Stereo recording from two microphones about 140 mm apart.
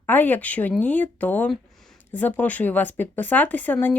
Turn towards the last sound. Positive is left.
turn(degrees=10)  # may be behind; listen again after turning